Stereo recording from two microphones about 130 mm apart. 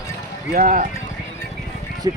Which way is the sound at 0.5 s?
90° right.